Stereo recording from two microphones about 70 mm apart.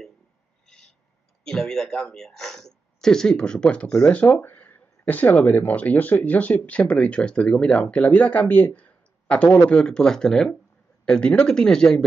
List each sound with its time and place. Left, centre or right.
1.4 s speech: centre
4.1 s speech: left